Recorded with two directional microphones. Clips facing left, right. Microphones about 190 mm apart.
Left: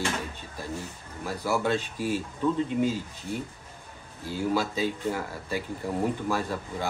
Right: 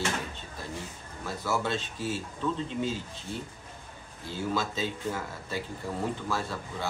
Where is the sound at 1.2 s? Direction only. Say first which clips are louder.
Left 3 dB; 15° left (ahead or behind).